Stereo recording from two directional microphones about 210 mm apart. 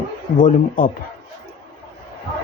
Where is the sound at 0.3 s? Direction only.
40° left (ahead or behind).